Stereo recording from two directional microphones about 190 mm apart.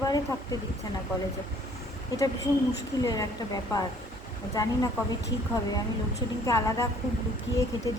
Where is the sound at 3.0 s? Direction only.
20° left (ahead or behind).